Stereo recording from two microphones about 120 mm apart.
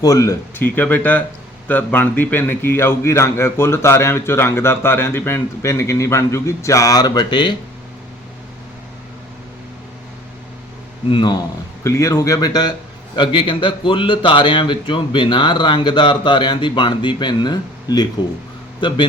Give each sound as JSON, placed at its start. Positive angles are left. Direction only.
{"t": 0.0, "sound": "a man's voice", "side_deg": 30}
{"t": 0.6, "sound": "a man's voice", "side_deg": 15}
{"t": 11.1, "sound": "speech", "side_deg": 40}
{"t": 11.8, "sound": "a man's voice", "side_deg": 25}